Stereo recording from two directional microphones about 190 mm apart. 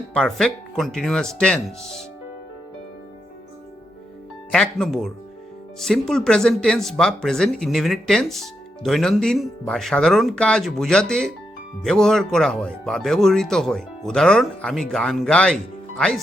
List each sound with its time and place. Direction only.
0.1 s speech: 5° left (ahead or behind)
4.5 s speech: 5° left (ahead or behind)